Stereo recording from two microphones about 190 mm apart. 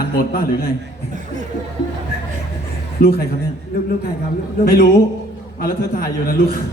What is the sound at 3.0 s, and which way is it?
Speech, 55° left (ahead or behind).